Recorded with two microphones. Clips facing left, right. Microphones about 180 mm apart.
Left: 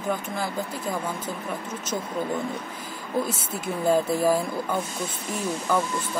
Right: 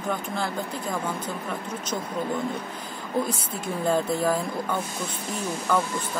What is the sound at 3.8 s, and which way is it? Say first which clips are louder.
Speech: left 3 dB; 10° left (ahead or behind).